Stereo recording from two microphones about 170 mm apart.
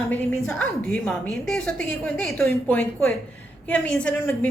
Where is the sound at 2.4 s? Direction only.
15° left (ahead or behind).